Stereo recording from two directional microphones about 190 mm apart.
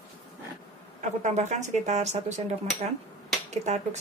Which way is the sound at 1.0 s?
40° right (ahead or behind).